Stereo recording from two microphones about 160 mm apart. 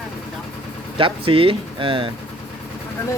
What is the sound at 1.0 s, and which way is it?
Speech, 35° right (ahead or behind).